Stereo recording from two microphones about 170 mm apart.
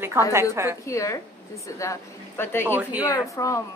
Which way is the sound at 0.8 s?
20° left (ahead or behind).